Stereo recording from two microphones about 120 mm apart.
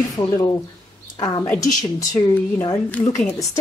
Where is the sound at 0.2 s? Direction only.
40° left (ahead or behind).